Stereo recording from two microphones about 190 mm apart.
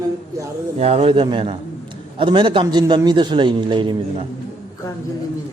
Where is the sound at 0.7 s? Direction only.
35° right (ahead or behind).